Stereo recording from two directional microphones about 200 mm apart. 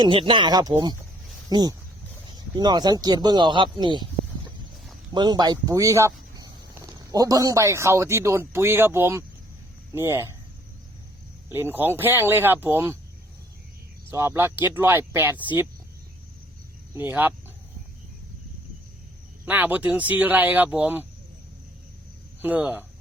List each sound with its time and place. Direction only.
0.0 s speech: 25° right (ahead or behind)
5.1 s speech: 20° right (ahead or behind)
11.4 s speech: 10° right (ahead or behind)
14.1 s speech: 10° right (ahead or behind)
16.9 s speech: 10° right (ahead or behind)
19.5 s speech: 10° right (ahead or behind)
22.4 s speech: 5° right (ahead or behind)